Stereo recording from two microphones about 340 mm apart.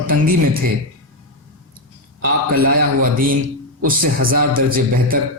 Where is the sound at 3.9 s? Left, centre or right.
Right.